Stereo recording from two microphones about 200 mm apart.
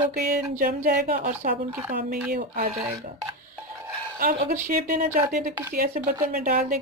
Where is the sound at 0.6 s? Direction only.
45° right (ahead or behind).